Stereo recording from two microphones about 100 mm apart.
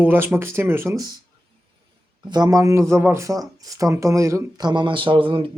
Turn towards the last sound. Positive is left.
turn(degrees=-60)  # may be behind; listen again after turning